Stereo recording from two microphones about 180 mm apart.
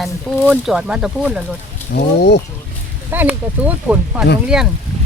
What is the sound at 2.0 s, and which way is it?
Speech, 70° left (ahead or behind).